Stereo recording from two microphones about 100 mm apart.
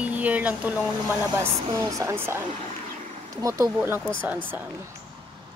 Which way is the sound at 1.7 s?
30° right (ahead or behind).